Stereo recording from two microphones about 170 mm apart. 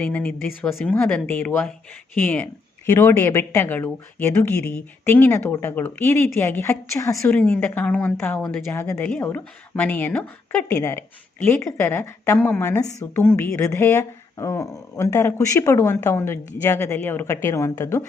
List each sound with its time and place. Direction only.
0.0 s speech: 10° left (ahead or behind)